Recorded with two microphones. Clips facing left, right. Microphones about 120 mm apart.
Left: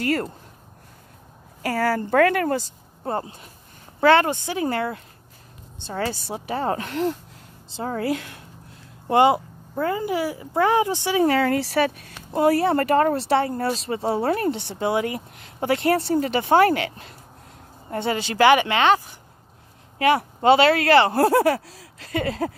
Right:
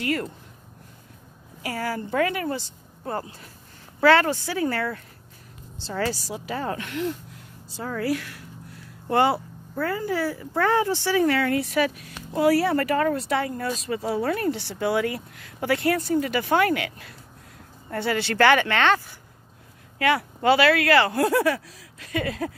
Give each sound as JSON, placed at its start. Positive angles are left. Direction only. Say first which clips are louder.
{"t": 0.0, "sound": "speech", "louder": "left 3 dB", "side_deg": 40}
{"t": 1.6, "sound": "a woman's voice", "louder": "left 6 dB", "side_deg": 50}
{"t": 3.0, "sound": "a woman's voice", "louder": "left 3 dB", "side_deg": 25}
{"t": 11.2, "sound": "speech", "louder": "left 2 dB", "side_deg": 30}